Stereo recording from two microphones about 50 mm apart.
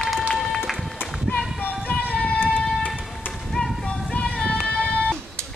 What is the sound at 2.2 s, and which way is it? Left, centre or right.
Child singing, left.